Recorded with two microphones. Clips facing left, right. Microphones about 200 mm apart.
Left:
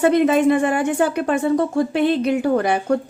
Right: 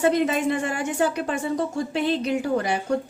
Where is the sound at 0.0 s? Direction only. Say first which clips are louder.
Left 6 dB; 55° left (ahead or behind).